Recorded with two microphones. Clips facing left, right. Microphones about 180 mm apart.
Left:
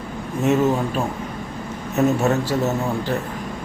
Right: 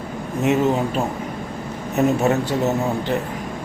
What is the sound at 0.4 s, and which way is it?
Speech, 20° right (ahead or behind).